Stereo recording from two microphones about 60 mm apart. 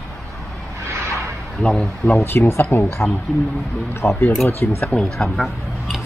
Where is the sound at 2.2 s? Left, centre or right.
Left.